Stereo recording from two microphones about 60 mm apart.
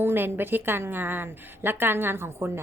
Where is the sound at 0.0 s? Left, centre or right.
Right.